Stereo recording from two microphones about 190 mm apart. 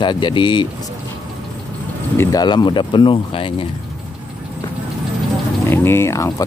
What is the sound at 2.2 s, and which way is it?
Speech, 20° left (ahead or behind).